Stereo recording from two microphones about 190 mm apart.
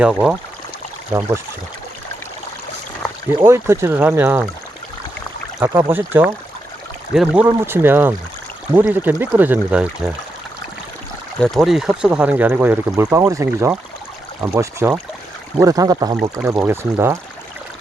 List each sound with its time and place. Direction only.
0.0 s speech: 5° right (ahead or behind)
3.4 s speech: 15° right (ahead or behind)
5.5 s speech: 15° right (ahead or behind)
11.3 s speech: centre (ahead or behind); by 17.2 s 15° right (ahead or behind)